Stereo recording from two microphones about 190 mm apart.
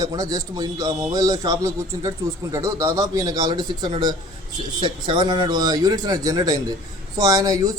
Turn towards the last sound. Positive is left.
turn(degrees=-20)  # may be behind; listen again after turning